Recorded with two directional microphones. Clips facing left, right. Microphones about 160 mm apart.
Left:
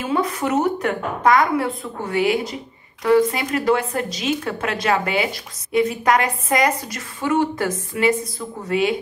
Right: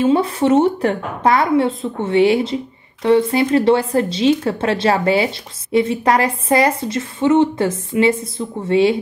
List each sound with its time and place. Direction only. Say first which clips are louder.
0.0 s speech: right 7 dB; 30° right (ahead or behind)